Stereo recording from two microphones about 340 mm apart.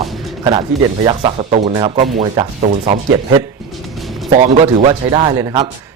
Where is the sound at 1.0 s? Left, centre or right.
Centre.